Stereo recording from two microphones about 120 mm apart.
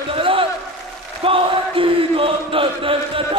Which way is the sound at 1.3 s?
50° right (ahead or behind).